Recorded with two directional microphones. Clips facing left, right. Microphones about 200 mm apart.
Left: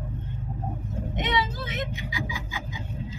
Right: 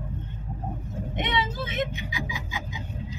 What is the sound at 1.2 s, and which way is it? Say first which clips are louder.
Speech: even; 25° right (ahead or behind).